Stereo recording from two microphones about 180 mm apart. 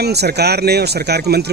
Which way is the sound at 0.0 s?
65° right (ahead or behind).